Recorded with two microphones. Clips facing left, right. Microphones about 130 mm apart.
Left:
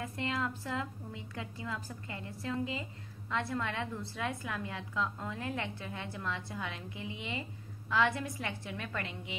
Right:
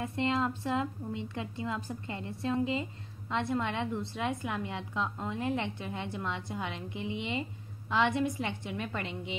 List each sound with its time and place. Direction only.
0.0 s a woman's voice: 25° right (ahead or behind)